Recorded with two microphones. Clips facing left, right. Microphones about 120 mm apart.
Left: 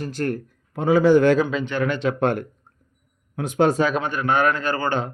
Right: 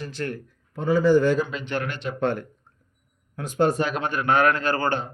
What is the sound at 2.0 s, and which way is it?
Speech, 55° left (ahead or behind).